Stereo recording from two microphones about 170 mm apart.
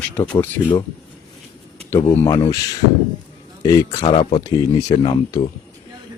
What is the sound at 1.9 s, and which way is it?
Speech, 15° left (ahead or behind).